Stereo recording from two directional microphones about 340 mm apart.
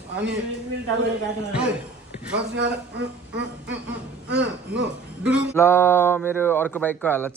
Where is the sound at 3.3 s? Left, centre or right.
Right.